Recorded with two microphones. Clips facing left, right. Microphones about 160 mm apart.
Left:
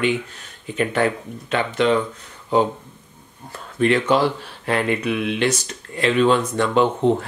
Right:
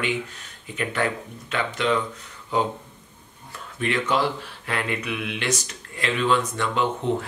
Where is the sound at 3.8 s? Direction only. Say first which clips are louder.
Left 6 dB; 35° left (ahead or behind).